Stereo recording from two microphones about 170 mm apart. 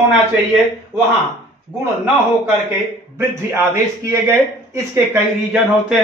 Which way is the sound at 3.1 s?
15° right (ahead or behind).